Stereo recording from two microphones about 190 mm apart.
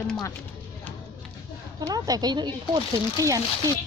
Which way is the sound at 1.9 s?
20° right (ahead or behind).